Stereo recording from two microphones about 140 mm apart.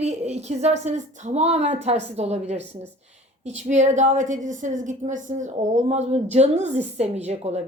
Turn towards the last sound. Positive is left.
turn(degrees=-50)  # may be behind; listen again after turning